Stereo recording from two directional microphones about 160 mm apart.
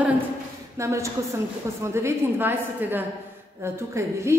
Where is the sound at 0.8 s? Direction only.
20° right (ahead or behind).